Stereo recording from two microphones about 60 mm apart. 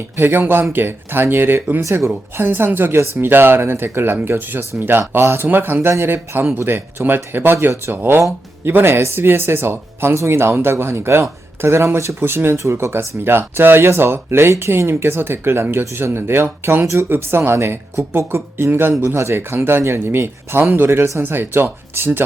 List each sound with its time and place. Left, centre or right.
0.2 s speech: right
1.8 s speech: right
2.0 s speech: right